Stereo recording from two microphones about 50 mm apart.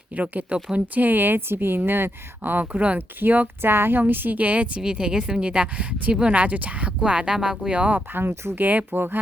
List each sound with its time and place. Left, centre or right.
0.2 s a woman's voice: right
3.6 s a woman's voice: right
4.8 s speech: centre
7.7 s speech: right
8.1 s speech: right
8.5 s a woman's voice: right